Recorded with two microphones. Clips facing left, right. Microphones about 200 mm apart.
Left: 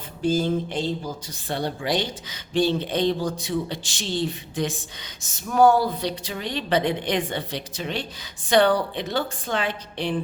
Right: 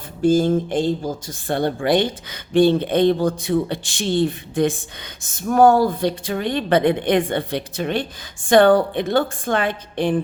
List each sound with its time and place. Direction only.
0.2 s a woman's voice: 50° right (ahead or behind)